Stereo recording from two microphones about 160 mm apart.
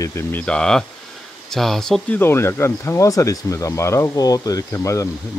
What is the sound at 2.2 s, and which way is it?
Speech, 15° left (ahead or behind).